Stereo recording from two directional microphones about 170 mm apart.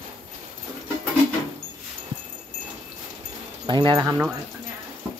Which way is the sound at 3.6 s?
25° right (ahead or behind).